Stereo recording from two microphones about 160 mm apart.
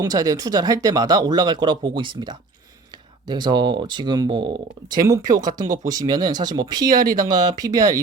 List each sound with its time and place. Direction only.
0.0 s speech: 25° right (ahead or behind)